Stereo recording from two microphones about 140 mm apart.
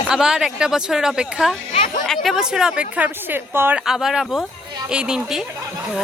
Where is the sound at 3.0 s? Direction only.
15° right (ahead or behind).